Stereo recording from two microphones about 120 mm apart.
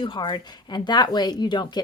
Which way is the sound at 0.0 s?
40° left (ahead or behind).